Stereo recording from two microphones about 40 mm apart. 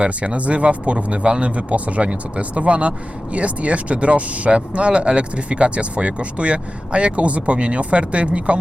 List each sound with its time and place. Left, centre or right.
0.0 s speech: right